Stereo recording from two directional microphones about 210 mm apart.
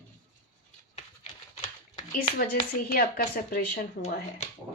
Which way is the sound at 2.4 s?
45° left (ahead or behind).